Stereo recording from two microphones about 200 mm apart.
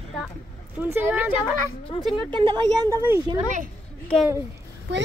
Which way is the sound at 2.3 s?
25° right (ahead or behind).